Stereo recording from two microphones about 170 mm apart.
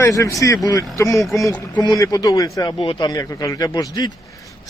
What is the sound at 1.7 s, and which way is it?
A man's voice, 20° left (ahead or behind).